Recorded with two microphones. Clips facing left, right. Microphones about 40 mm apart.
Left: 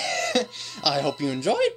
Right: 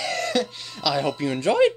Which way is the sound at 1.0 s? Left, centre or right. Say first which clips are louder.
Right 1 dB; right.